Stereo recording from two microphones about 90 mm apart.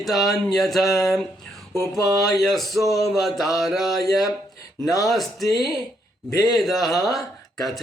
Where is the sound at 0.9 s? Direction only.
40° left (ahead or behind).